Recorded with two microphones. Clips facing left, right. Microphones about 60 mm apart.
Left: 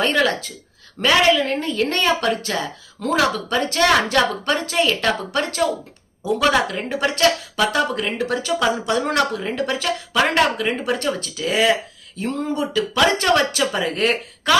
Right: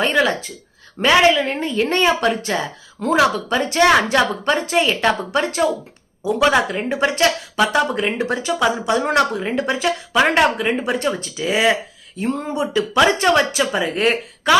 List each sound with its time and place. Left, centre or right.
0.0 s speech: centre
0.9 s speech: right